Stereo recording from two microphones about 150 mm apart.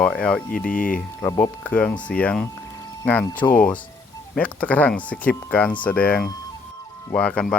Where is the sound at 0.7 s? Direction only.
65° left (ahead or behind).